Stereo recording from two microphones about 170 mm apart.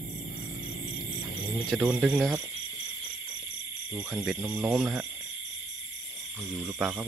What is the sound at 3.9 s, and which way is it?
Speech, 5° right (ahead or behind).